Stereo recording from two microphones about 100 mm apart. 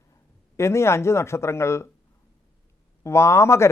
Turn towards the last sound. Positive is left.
turn(degrees=25)  # may be behind; listen again after turning